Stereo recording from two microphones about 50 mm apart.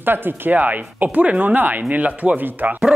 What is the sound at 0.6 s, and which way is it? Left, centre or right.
Speech, right.